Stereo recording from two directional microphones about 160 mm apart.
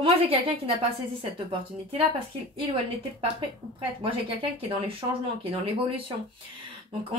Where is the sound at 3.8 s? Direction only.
35° right (ahead or behind).